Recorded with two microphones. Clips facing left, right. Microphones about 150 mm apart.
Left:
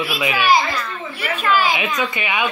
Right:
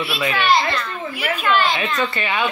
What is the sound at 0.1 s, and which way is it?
A woman's voice, 10° left (ahead or behind).